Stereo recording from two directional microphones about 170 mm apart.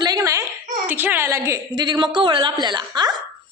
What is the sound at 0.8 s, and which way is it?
A woman's voice, 10° right (ahead or behind).